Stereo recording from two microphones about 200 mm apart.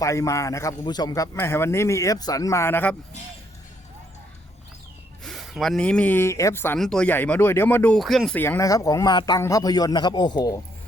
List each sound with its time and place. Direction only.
0.0 s speech: 15° left (ahead or behind)
5.2 s speech: centre (ahead or behind); by 10.6 s 20° left (ahead or behind)